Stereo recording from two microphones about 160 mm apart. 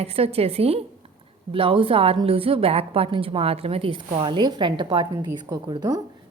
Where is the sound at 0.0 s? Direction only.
40° right (ahead or behind).